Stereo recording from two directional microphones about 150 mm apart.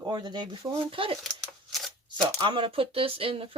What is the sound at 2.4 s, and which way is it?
Speech, 35° right (ahead or behind).